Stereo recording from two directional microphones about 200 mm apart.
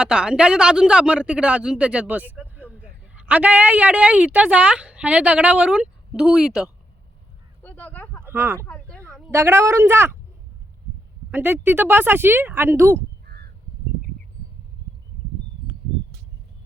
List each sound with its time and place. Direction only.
0.0 s speech: 5° right (ahead or behind)
7.6 s a sound: 5° left (ahead or behind)
8.2 s speech: 10° right (ahead or behind)
8.6 s a sound: 5° left (ahead or behind)
9.3 s speech: 15° right (ahead or behind)
11.3 s speech: 10° right (ahead or behind)
13.2 s crow: 55° right (ahead or behind)